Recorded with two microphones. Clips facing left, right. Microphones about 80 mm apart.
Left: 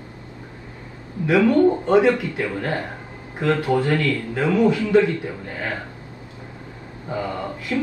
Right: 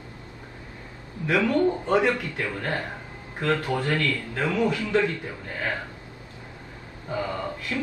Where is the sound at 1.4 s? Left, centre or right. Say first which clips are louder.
Left 8 dB; centre.